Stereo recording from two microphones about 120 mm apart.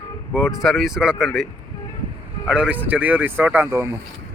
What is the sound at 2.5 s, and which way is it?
Speech, 10° right (ahead or behind).